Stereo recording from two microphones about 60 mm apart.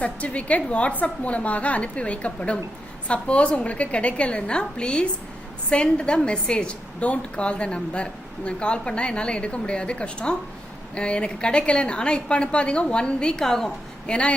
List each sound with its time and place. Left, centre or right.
0.0 s a woman's voice: left
14.1 s a woman's voice: left